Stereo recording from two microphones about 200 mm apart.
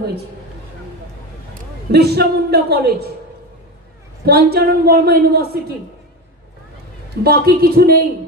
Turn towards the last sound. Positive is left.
turn(degrees=-50)  # may be behind; listen again after turning